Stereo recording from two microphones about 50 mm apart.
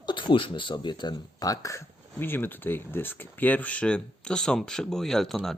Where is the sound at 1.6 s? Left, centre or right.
Left.